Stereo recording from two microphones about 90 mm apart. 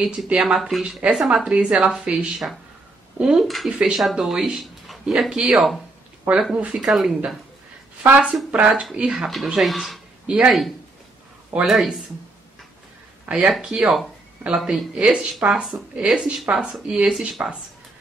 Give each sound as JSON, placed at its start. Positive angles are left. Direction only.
{"t": 0.0, "sound": "speech", "side_deg": -5}
{"t": 3.7, "sound": "speech", "side_deg": -10}
{"t": 8.0, "sound": "speech", "side_deg": -20}
{"t": 10.2, "sound": "speech", "side_deg": -10}
{"t": 11.6, "sound": "speech", "side_deg": 0}
{"t": 13.3, "sound": "speech", "side_deg": -10}